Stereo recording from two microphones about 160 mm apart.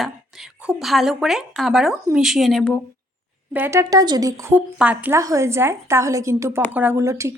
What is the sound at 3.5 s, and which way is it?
Speech, 15° right (ahead or behind).